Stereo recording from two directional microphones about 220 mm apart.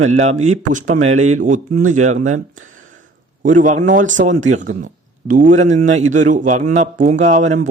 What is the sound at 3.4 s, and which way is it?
Speech, 35° right (ahead or behind).